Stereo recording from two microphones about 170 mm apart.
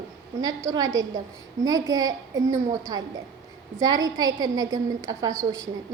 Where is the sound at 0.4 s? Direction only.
20° right (ahead or behind).